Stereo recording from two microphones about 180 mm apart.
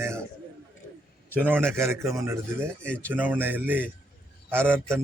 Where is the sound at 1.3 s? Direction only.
10° right (ahead or behind).